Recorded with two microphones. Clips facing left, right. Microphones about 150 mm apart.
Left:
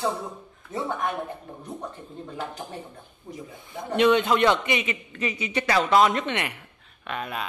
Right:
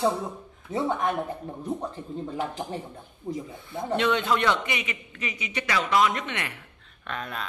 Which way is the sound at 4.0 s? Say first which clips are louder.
Left 6 dB; 20° left (ahead or behind).